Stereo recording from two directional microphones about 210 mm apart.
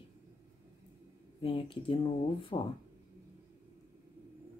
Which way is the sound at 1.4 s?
25° left (ahead or behind).